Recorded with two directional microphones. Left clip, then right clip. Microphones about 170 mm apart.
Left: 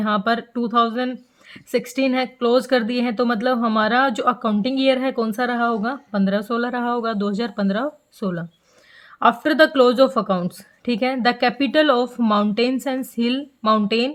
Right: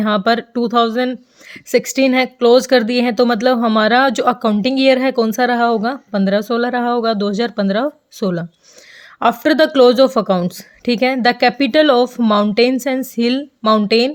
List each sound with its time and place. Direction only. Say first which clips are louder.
0.0 s speech: right 5 dB; 35° right (ahead or behind)